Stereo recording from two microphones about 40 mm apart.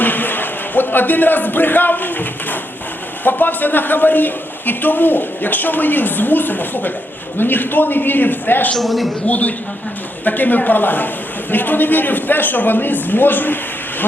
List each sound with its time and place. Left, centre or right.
0.0 s speech: left
8.8 s a man's voice: centre
9.2 s a man's voice: left